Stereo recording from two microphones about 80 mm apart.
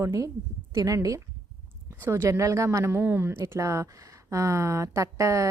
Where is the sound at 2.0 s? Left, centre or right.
Right.